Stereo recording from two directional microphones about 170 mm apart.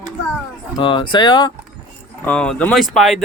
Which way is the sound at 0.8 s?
30° left (ahead or behind).